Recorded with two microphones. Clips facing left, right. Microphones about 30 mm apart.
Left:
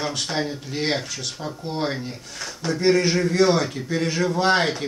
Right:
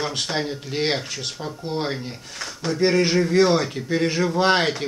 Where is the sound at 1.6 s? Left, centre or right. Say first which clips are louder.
Even; centre.